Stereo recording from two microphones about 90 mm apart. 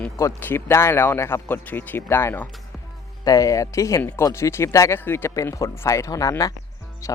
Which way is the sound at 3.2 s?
40° left (ahead or behind).